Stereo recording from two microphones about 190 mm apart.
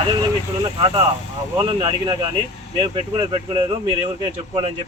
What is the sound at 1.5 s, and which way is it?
Speech, 25° right (ahead or behind).